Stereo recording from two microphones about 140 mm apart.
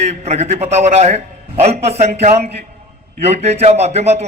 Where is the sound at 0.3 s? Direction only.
50° right (ahead or behind).